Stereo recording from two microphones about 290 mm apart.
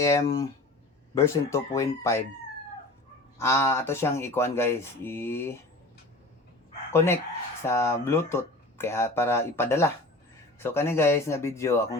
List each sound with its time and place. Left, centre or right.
0.0 s speech: centre
3.3 s speech: centre
6.9 s speech: centre